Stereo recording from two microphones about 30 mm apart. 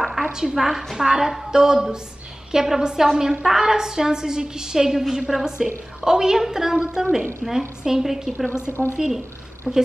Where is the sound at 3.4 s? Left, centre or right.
Centre.